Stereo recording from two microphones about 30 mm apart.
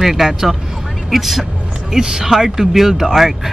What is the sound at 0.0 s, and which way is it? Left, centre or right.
A man's voice, centre.